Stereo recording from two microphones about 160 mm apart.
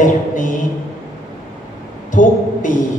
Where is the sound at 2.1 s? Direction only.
55° left (ahead or behind).